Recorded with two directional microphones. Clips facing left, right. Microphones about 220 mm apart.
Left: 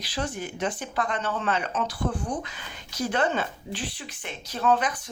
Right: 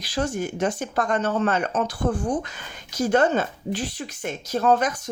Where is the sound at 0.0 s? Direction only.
45° right (ahead or behind).